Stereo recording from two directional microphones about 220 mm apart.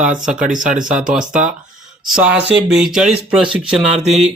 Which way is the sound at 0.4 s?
35° right (ahead or behind).